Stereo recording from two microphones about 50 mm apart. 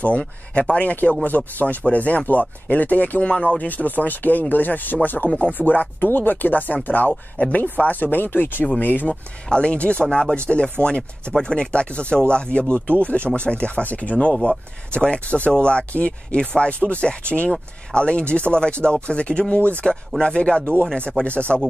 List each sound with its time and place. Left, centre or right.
0.6 s speech: left
10.0 s speech: centre